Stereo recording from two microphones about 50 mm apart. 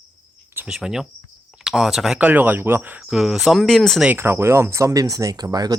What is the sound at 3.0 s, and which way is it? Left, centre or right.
Cricket, centre.